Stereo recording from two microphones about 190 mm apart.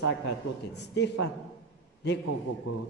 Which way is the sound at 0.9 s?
65° left (ahead or behind).